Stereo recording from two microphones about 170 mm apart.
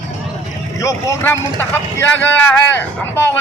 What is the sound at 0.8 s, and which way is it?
Speech, 15° left (ahead or behind).